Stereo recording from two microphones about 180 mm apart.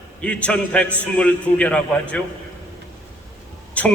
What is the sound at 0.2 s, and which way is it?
A man's voice, 5° left (ahead or behind).